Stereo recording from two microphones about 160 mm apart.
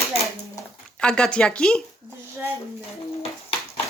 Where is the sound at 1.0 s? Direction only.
5° left (ahead or behind).